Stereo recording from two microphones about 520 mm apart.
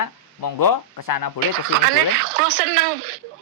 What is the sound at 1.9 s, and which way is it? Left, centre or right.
Speech, right.